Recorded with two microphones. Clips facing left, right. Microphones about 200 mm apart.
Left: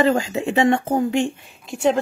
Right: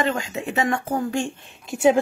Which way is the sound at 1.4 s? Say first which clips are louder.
Right 2 dB; centre (ahead or behind).